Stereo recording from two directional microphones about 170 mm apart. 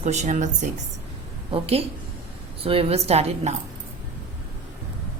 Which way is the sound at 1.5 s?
35° right (ahead or behind).